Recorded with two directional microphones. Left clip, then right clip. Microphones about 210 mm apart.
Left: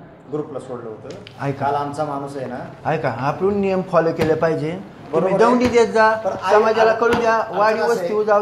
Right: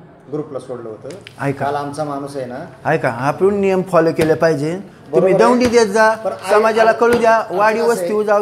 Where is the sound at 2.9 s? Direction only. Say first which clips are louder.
Right 4 dB; 60° right (ahead or behind).